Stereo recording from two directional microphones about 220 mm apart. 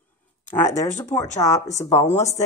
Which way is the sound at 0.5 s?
15° left (ahead or behind).